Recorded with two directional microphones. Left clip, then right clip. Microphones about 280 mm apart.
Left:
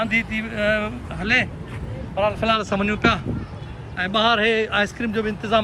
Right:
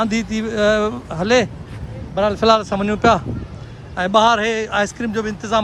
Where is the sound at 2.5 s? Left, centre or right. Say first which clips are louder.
Right 4 dB; centre.